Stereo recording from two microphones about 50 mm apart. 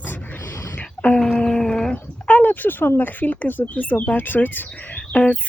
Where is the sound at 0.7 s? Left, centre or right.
Left.